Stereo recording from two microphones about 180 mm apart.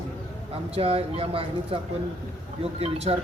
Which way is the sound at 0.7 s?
35° right (ahead or behind).